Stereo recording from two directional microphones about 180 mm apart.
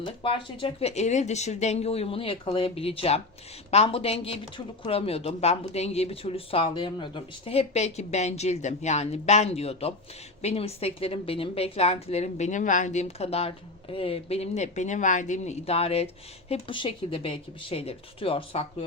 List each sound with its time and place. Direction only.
0.0 s speech: 25° left (ahead or behind)